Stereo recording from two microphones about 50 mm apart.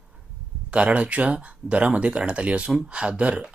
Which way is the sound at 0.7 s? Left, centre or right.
Right.